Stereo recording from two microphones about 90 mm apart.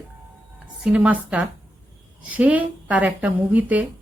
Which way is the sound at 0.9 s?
15° right (ahead or behind).